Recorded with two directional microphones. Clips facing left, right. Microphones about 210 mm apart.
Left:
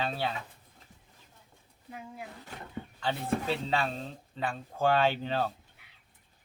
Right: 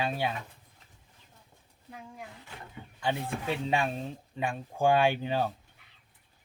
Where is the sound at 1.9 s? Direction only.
5° left (ahead or behind).